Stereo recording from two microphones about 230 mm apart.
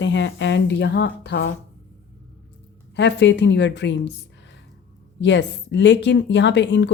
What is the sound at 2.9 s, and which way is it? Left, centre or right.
Speech, left.